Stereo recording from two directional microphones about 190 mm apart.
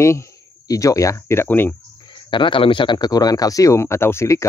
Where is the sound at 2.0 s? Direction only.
25° left (ahead or behind).